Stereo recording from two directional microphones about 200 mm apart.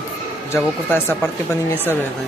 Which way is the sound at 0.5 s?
10° left (ahead or behind).